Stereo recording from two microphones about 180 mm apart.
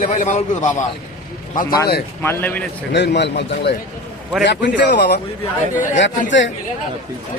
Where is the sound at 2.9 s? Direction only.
70° left (ahead or behind).